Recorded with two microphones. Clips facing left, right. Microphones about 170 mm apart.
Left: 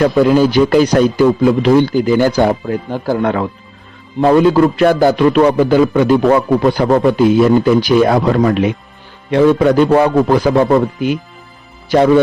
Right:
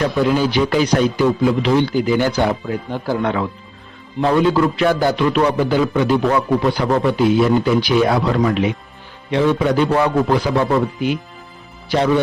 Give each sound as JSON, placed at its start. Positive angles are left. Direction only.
{"t": 0.2, "sound": "speech", "side_deg": 45}
{"t": 4.2, "sound": "speech", "side_deg": 45}